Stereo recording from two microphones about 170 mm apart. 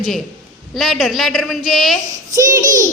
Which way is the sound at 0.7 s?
Centre (ahead or behind).